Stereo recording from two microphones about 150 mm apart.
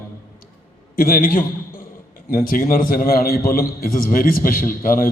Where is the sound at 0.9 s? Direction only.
70° left (ahead or behind).